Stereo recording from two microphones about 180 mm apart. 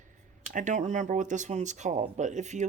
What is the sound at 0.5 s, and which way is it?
Speech, 45° right (ahead or behind).